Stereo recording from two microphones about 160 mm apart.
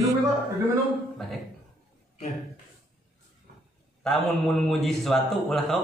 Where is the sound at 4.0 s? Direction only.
Centre (ahead or behind).